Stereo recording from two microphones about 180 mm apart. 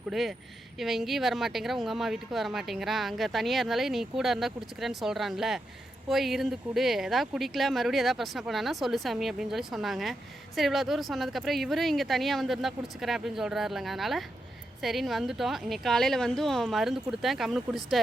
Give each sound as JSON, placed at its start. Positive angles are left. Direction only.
{"t": 0.1, "sound": "speech", "side_deg": 0}